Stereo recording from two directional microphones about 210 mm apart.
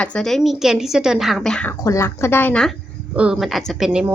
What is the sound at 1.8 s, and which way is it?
A woman's voice, 15° left (ahead or behind).